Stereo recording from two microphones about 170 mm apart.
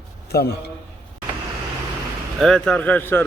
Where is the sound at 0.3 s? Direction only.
70° left (ahead or behind).